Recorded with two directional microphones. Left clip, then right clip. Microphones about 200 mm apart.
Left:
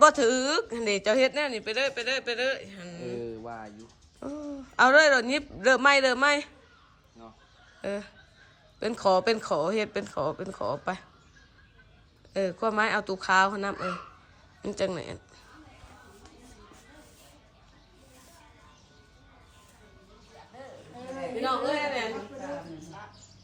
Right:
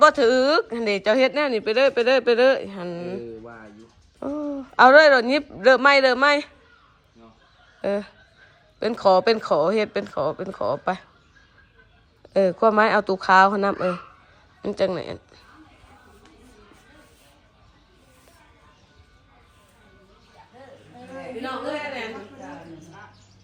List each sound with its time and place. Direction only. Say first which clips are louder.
0.0 s a woman's voice: right 5 dB; 10° left (ahead or behind)
3.4 s music: left 2 dB; 20° left (ahead or behind)
4.2 s a woman's voice: right 9 dB; 5° left (ahead or behind)
7.8 s a woman's voice: right 9 dB; 5° left (ahead or behind)
12.3 s a woman's voice: right 10 dB; 5° left (ahead or behind)